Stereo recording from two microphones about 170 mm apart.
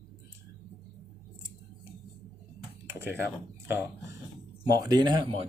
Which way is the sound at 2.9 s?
15° right (ahead or behind).